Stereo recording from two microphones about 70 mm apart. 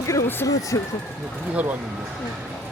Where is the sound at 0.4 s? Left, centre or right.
Left.